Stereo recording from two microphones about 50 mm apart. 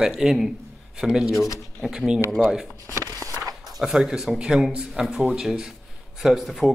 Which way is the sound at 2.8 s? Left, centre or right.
Left.